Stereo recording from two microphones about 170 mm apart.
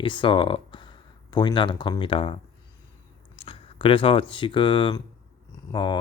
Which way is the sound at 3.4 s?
30° left (ahead or behind).